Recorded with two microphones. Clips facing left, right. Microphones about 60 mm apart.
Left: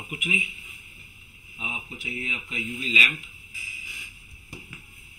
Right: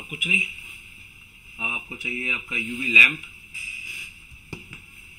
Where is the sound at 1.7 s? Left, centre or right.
Right.